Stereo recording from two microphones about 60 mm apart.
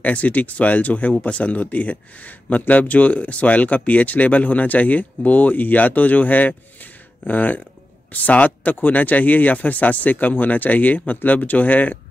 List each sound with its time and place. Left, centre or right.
0.0 s speech: left